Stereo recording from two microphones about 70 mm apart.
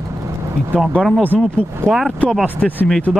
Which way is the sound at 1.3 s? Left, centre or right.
Centre.